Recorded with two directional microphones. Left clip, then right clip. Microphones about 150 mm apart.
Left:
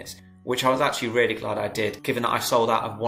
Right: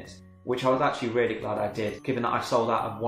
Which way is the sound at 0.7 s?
15° left (ahead or behind).